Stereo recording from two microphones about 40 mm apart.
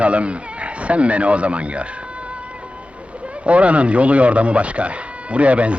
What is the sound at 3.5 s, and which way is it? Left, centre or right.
Speech, right.